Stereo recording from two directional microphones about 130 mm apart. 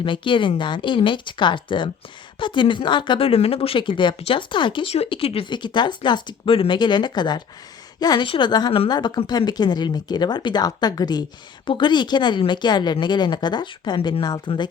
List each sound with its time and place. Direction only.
0.0 s speech: 40° left (ahead or behind)